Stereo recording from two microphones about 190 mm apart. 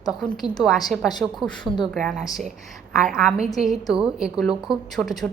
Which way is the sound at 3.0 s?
5° right (ahead or behind).